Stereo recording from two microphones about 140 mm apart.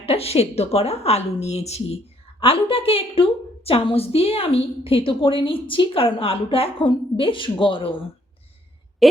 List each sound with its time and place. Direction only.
0.0 s a woman's voice: 45° left (ahead or behind)